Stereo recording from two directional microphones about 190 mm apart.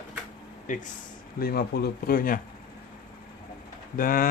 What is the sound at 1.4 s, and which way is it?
Speech, 55° left (ahead or behind).